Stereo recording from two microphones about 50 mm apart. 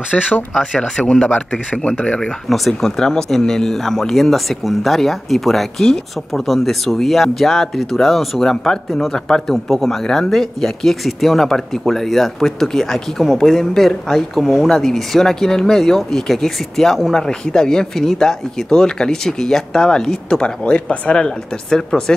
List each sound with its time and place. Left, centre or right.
0.1 s speech: centre
2.5 s speech: centre